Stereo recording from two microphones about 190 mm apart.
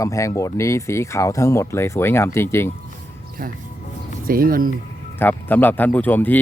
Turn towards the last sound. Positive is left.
turn(degrees=10)  # may be behind; listen again after turning